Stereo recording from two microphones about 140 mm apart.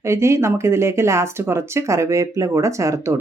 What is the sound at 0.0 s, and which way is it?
Speech, 20° right (ahead or behind).